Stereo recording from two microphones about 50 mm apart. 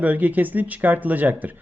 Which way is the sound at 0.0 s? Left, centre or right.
Right.